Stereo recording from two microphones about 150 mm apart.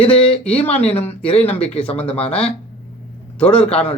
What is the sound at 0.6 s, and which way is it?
Speech, 40° left (ahead or behind).